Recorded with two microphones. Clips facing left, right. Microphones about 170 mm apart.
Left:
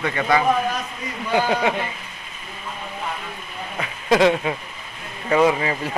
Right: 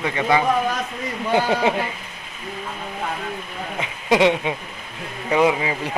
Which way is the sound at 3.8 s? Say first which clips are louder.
Even; 15° right (ahead or behind).